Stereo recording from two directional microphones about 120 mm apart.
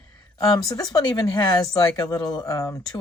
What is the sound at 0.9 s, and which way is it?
Speech, 30° left (ahead or behind).